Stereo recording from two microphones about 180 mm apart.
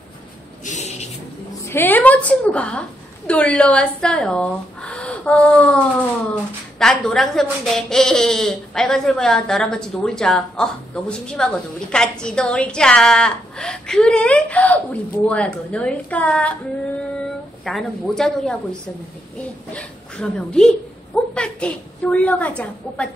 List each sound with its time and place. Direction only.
0.7 s a sound: 40° left (ahead or behind)
1.7 s a woman's voice: 10° left (ahead or behind)
6.8 s a woman's voice: 5° left (ahead or behind)
17.6 s a woman's voice: centre (ahead or behind)